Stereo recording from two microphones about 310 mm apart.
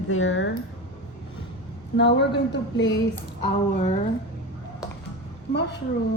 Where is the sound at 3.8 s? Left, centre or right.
Left.